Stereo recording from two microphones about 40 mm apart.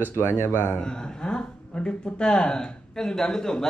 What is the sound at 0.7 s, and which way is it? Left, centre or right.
A man's voice, centre.